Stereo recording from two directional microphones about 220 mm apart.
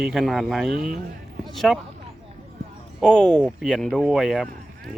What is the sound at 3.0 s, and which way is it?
Speech, 5° left (ahead or behind).